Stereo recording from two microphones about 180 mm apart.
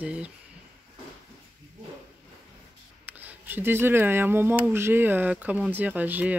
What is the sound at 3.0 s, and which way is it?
Speech, 10° right (ahead or behind).